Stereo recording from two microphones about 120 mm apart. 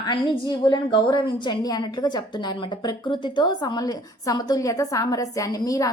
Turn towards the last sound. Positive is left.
turn(degrees=30)  # may be behind; listen again after turning